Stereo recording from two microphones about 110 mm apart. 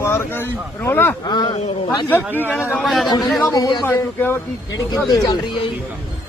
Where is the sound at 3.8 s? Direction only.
20° left (ahead or behind).